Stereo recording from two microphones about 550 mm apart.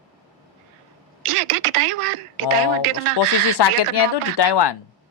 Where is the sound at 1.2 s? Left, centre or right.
Right.